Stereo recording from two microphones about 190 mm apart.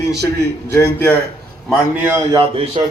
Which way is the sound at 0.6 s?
10° left (ahead or behind).